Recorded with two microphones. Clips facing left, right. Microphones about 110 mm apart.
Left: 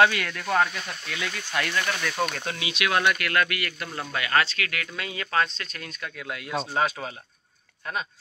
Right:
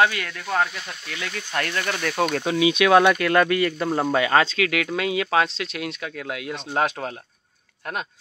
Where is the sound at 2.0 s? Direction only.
70° right (ahead or behind).